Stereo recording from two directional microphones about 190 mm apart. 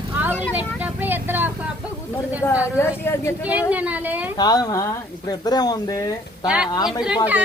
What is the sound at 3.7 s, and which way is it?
Speech, 10° right (ahead or behind).